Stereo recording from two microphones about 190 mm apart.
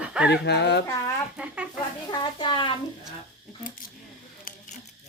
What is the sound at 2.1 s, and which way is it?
Speech, 25° left (ahead or behind).